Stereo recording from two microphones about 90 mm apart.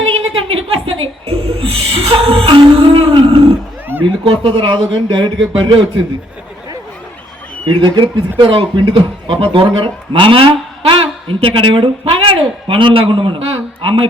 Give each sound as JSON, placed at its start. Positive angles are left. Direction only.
{"t": 0.1, "sound": "music", "side_deg": -90}
{"t": 4.0, "sound": "speech", "side_deg": -85}
{"t": 7.6, "sound": "speech", "side_deg": -60}